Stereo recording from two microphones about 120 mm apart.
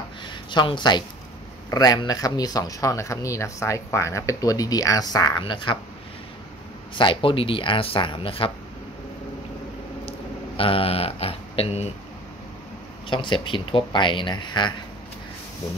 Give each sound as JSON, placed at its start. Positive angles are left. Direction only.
{"t": 0.3, "sound": "speech", "side_deg": 40}
{"t": 7.0, "sound": "speech", "side_deg": 45}
{"t": 10.6, "sound": "a sound", "side_deg": 50}
{"t": 13.1, "sound": "speech", "side_deg": 40}